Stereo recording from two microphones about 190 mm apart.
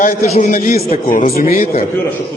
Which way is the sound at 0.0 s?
45° left (ahead or behind).